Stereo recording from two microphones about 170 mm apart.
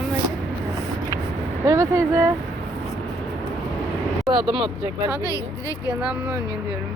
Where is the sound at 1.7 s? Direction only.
20° right (ahead or behind).